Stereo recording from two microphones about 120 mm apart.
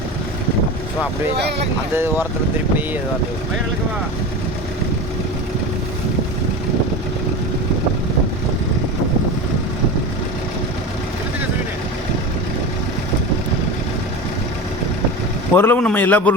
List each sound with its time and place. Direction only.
15.5 s a man's voice: 15° left (ahead or behind)